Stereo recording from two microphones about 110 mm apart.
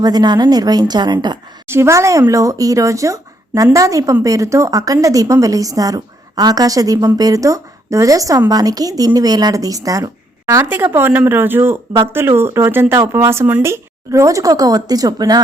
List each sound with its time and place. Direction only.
0.0 s speech: 40° right (ahead or behind)
1.6 s a woman's voice: 25° right (ahead or behind)